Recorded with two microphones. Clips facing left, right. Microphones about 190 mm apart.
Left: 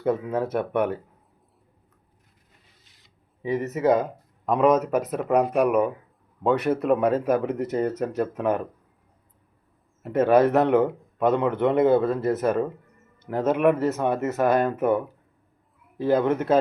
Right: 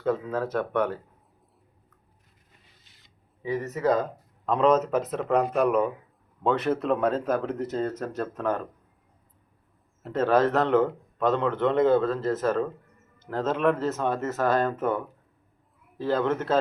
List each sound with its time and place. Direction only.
0.0 s speech: 20° left (ahead or behind)
3.4 s speech: 20° left (ahead or behind)
10.1 s speech: 15° left (ahead or behind)